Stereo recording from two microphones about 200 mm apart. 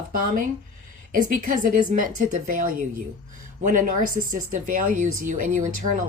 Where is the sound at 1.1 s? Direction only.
45° right (ahead or behind).